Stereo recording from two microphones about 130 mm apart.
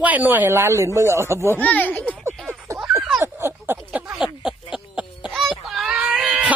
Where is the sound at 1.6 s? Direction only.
10° left (ahead or behind).